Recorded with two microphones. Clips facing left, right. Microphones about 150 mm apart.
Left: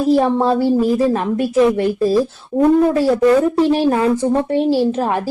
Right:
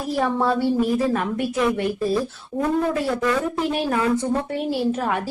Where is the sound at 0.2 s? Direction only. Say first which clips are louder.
Left 6 dB; 25° left (ahead or behind).